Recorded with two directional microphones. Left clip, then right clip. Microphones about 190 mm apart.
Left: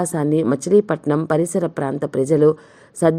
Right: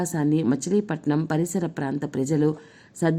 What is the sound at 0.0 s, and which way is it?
A woman's voice, 15° left (ahead or behind).